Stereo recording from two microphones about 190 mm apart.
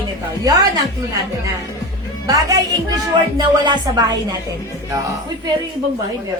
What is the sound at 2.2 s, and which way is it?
Speech, 15° right (ahead or behind).